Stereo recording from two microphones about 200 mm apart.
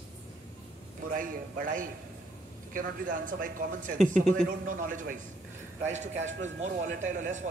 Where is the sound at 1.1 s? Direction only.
45° right (ahead or behind).